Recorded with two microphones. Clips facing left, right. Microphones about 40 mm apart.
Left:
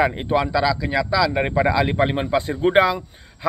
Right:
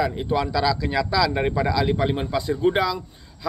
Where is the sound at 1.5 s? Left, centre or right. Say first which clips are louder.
Left 3 dB; left.